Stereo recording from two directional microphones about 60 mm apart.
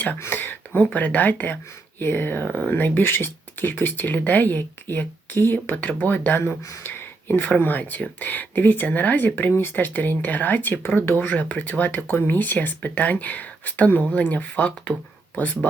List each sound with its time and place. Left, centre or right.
0.2 s speech: left
6.8 s a sound: left
7.6 s speech: left